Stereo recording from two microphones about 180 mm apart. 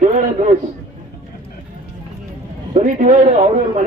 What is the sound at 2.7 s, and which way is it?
Speech, 45° right (ahead or behind).